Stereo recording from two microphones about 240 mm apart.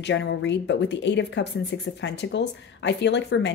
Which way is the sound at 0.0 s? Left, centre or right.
Left.